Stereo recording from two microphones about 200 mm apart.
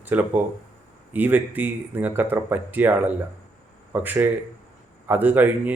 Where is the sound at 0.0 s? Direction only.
10° right (ahead or behind).